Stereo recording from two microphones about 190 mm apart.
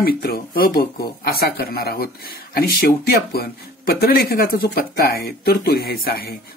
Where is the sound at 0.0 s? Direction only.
55° left (ahead or behind).